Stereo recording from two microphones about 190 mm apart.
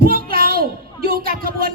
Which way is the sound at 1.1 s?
50° right (ahead or behind).